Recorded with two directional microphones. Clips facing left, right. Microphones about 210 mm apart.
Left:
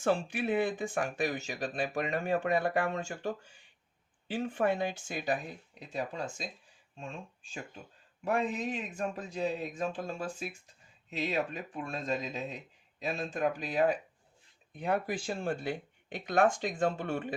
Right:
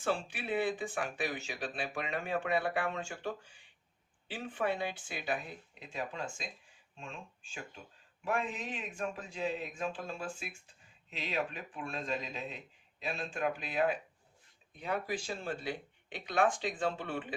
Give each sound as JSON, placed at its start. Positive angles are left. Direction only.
{"t": 0.0, "sound": "a man's voice", "side_deg": 45}